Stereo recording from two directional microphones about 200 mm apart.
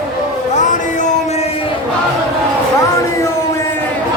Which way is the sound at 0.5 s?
40° left (ahead or behind).